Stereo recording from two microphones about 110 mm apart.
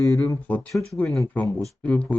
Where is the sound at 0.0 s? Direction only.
30° left (ahead or behind).